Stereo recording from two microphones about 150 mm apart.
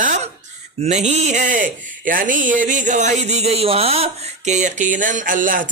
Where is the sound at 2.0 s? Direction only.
65° right (ahead or behind).